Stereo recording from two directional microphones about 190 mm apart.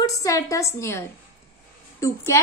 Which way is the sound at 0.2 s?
15° left (ahead or behind).